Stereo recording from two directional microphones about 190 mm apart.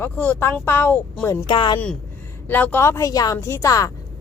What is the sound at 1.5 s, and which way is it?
Speech, 25° left (ahead or behind).